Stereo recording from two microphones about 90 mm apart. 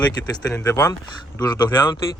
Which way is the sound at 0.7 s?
40° left (ahead or behind).